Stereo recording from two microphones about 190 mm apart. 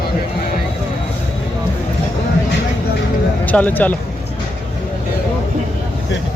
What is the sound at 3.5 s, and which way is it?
Speech, 10° left (ahead or behind).